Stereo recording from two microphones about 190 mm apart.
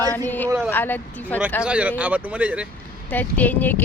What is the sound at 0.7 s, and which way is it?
Speech, 10° left (ahead or behind).